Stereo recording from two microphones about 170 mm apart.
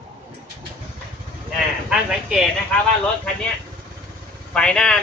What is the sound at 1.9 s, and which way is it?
Speech, 5° right (ahead or behind).